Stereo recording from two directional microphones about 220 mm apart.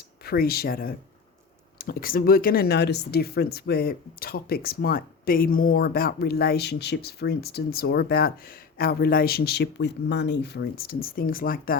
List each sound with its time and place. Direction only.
0.3 s speech: 45° left (ahead or behind)